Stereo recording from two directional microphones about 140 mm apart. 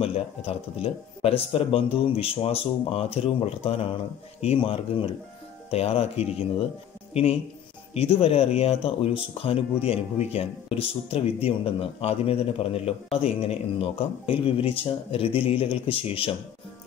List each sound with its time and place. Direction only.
0.0 s speech: 45° left (ahead or behind)
7.9 s speech: 45° left (ahead or behind)